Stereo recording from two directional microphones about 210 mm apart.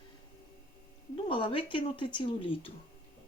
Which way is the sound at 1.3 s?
25° left (ahead or behind).